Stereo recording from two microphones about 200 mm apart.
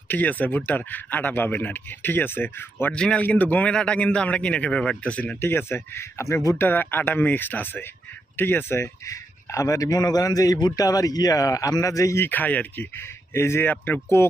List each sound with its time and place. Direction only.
0.1 s a man's voice: 10° left (ahead or behind)